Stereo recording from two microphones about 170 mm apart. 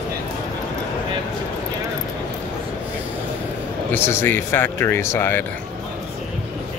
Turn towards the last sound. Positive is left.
turn(degrees=15)  # may be behind; listen again after turning